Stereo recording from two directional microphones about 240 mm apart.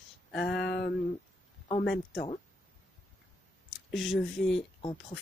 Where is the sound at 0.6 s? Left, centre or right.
Left.